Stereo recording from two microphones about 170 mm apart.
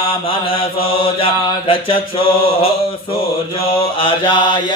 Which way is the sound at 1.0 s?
30° left (ahead or behind).